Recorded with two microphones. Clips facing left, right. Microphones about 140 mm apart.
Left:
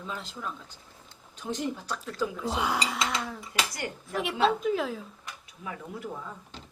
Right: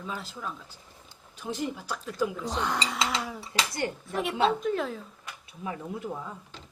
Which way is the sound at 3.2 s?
10° right (ahead or behind).